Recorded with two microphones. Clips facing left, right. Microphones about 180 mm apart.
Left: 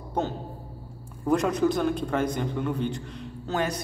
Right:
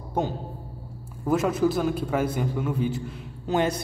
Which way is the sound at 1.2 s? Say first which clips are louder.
Even; 5° right (ahead or behind).